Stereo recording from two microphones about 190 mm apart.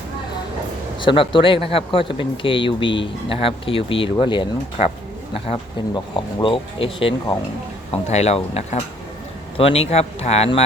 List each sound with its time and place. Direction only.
1.0 s a man's voice: 25° left (ahead or behind)